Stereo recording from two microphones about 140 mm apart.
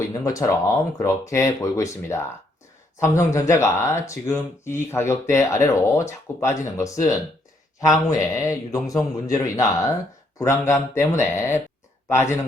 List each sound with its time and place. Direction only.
0.1 s speech: 25° left (ahead or behind)